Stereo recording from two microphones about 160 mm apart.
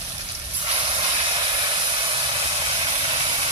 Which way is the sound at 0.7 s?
35° right (ahead or behind).